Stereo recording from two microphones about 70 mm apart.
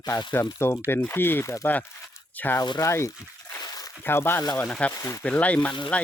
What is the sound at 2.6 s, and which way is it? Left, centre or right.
Speech, left.